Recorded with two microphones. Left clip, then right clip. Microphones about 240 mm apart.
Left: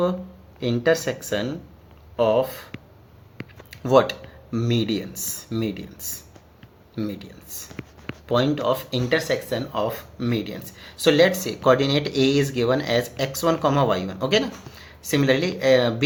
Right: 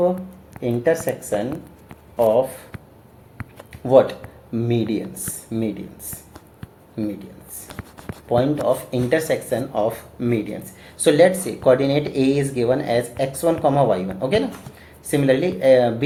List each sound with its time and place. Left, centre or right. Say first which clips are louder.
0.6 s speech: right 1 dB; left
3.7 s a sound: right 3 dB; left
4.5 s speech: right 2 dB; left
8.3 s speech: right 3 dB; left